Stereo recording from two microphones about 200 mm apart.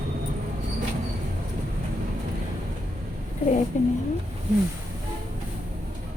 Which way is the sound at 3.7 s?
40° left (ahead or behind).